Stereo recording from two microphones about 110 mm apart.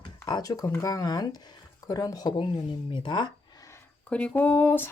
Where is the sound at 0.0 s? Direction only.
40° left (ahead or behind).